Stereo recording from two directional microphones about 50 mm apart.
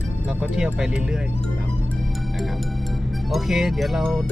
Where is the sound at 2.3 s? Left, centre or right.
Centre.